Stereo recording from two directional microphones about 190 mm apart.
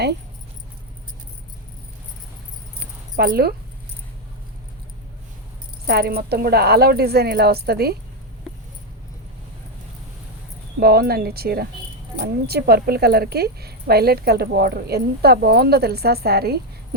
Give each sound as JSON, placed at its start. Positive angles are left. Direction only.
{"t": 3.2, "sound": "a woman's voice", "side_deg": -55}
{"t": 5.9, "sound": "a woman's voice", "side_deg": -55}
{"t": 10.8, "sound": "a woman's voice", "side_deg": -55}